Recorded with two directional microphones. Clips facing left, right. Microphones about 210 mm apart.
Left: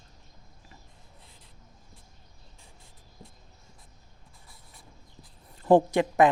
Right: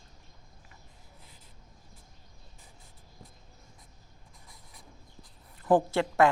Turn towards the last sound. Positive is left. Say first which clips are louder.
# left 3 dB
turn(degrees=15)  # may be behind; listen again after turning